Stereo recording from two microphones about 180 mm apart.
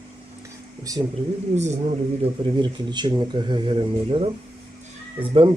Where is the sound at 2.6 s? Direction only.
25° right (ahead or behind).